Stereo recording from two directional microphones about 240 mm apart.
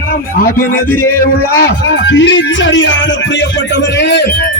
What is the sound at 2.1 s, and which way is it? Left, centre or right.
Music, left.